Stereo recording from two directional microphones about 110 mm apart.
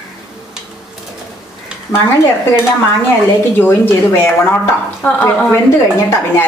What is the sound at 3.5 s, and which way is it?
Speech, 20° left (ahead or behind).